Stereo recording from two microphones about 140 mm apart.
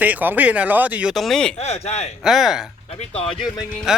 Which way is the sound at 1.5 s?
50° left (ahead or behind).